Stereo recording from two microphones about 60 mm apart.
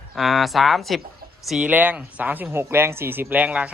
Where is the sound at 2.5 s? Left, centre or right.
Right.